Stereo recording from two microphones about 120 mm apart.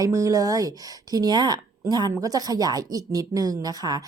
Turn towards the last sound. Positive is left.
turn(degrees=-35)  # may be behind; listen again after turning